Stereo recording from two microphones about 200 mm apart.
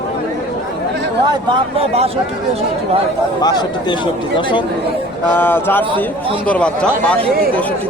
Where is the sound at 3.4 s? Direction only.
20° left (ahead or behind).